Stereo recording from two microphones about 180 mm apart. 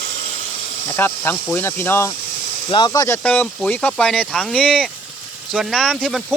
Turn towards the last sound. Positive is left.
turn(degrees=0)  # may be behind; listen again after turning